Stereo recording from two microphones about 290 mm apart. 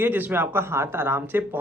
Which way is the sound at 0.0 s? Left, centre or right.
Centre.